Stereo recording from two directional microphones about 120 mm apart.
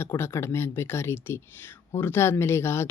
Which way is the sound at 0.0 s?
20° left (ahead or behind).